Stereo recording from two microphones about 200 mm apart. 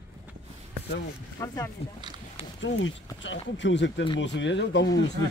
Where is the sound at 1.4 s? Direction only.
20° left (ahead or behind).